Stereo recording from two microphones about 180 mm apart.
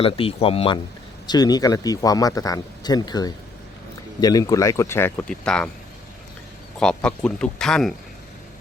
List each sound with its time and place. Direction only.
0.0 s speech: 30° left (ahead or behind); by 5.7 s 5° left (ahead or behind)
6.7 s speech: 5° left (ahead or behind)